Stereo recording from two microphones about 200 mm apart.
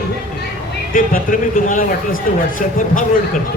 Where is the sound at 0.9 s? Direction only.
45° left (ahead or behind).